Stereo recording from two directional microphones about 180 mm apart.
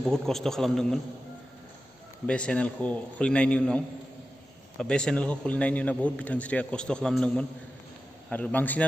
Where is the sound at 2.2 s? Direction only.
5° left (ahead or behind).